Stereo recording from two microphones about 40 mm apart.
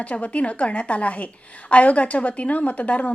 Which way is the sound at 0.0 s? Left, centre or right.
Left.